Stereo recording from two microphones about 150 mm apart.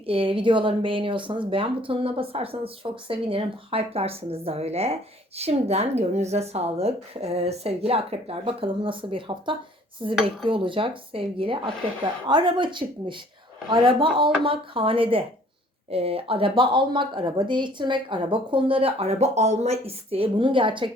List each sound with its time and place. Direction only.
0.0 s a woman's voice: 35° right (ahead or behind)